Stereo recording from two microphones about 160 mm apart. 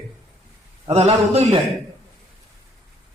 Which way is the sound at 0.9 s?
40° right (ahead or behind).